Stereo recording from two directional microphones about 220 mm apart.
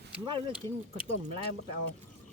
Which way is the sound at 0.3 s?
25° right (ahead or behind).